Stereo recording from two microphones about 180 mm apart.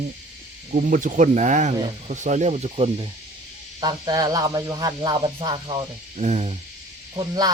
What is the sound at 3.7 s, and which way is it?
Speech, 20° right (ahead or behind).